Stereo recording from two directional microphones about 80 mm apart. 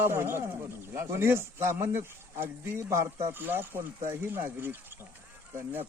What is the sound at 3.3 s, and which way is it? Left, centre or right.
Speech, right.